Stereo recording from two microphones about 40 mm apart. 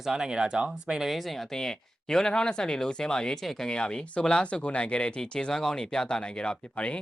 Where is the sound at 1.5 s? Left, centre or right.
Centre.